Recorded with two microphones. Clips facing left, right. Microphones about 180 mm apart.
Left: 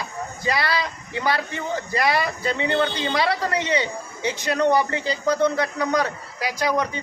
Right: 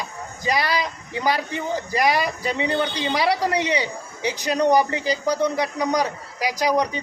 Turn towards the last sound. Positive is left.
turn(degrees=-15)  # may be behind; listen again after turning